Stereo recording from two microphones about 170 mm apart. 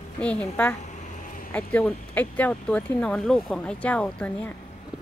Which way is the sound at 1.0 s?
50° left (ahead or behind).